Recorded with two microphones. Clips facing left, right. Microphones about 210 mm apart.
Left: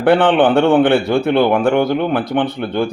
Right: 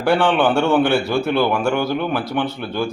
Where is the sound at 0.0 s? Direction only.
55° left (ahead or behind).